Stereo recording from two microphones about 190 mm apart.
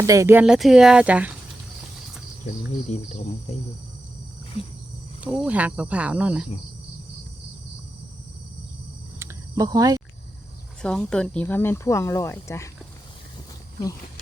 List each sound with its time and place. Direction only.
0.0 s speech: 15° right (ahead or behind)
2.9 s speech: 35° left (ahead or behind)
5.2 s speech: 5° right (ahead or behind)
9.1 s cricket: 15° right (ahead or behind)
10.8 s speech: 5° left (ahead or behind)